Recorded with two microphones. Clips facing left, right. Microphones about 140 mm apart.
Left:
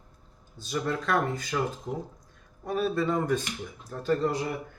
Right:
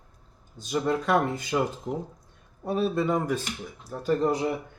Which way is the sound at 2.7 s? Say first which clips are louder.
Right 2 dB; 20° right (ahead or behind).